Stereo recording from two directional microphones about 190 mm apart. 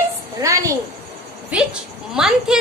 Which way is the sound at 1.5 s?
5° right (ahead or behind).